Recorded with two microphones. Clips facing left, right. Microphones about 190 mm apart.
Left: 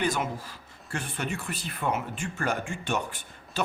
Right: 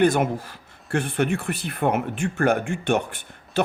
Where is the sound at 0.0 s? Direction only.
55° right (ahead or behind).